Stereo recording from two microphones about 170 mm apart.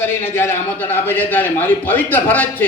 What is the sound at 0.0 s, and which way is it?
A man's voice, 15° left (ahead or behind).